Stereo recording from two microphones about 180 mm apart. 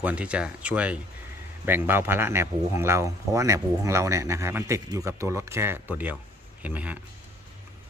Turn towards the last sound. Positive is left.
turn(degrees=-10)  # may be behind; listen again after turning